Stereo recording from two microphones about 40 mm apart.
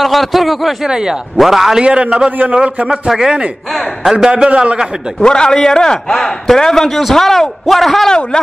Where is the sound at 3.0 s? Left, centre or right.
Centre.